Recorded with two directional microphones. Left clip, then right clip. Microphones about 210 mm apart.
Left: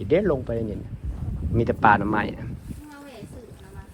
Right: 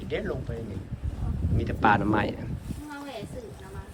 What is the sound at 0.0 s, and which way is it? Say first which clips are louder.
Speech: left 10 dB; 15° left (ahead or behind).